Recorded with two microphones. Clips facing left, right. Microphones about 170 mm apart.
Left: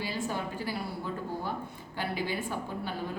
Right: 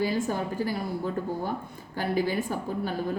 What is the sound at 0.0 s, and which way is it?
A woman's voice, 45° right (ahead or behind).